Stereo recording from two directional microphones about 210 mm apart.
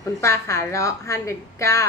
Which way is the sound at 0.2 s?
15° left (ahead or behind).